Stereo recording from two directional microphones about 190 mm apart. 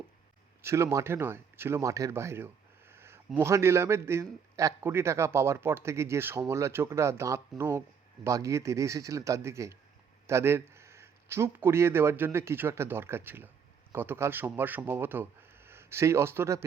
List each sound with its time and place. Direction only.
0.6 s speech: 15° right (ahead or behind)